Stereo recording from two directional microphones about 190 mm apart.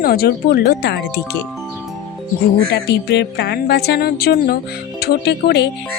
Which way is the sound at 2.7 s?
60° left (ahead or behind).